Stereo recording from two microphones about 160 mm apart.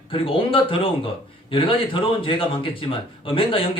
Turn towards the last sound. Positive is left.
turn(degrees=35)  # may be behind; listen again after turning